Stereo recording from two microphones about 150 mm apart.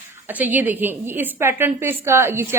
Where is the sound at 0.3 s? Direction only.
10° right (ahead or behind).